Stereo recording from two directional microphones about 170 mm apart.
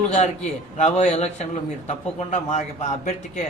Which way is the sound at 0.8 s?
40° left (ahead or behind).